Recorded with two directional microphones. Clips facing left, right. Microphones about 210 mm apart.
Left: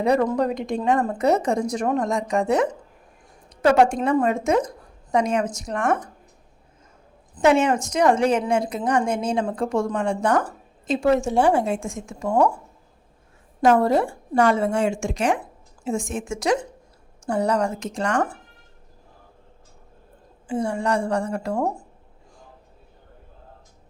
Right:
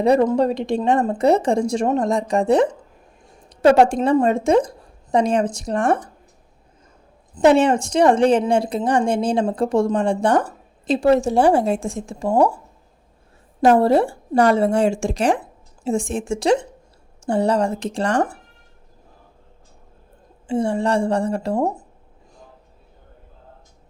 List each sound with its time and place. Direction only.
0.0 s a woman's voice: 30° right (ahead or behind)
7.3 s a woman's voice: 35° right (ahead or behind)
13.6 s a woman's voice: 30° right (ahead or behind)
20.5 s speech: 25° right (ahead or behind)